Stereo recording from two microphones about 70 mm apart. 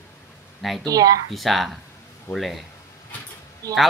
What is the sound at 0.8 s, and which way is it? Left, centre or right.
Speech, right.